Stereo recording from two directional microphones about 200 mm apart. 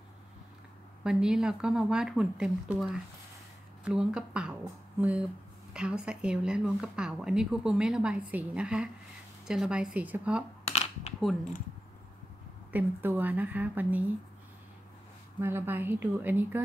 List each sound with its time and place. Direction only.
1.0 s speech: 5° right (ahead or behind)
5.7 s speech: 5° right (ahead or behind)
10.7 s a sound: 35° left (ahead or behind)
12.7 s speech: 10° right (ahead or behind)
15.4 s speech: 10° right (ahead or behind)